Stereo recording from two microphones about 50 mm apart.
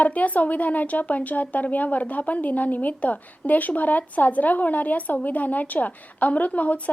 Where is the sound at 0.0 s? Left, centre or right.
Left.